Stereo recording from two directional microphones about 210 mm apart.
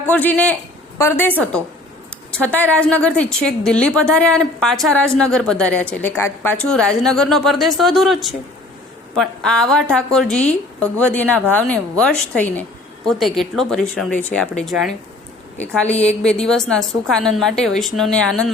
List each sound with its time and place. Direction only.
0.0 s a man's voice: 10° left (ahead or behind)
2.3 s a woman's voice: 5° left (ahead or behind)